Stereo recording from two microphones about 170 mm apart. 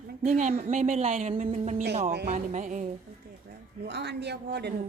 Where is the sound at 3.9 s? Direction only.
85° right.